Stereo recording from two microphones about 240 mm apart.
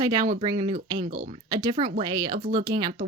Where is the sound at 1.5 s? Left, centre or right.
Centre.